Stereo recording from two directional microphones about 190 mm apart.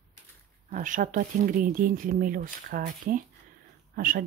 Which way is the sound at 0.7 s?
45° right (ahead or behind).